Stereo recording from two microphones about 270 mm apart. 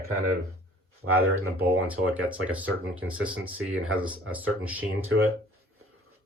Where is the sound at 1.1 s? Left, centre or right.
Right.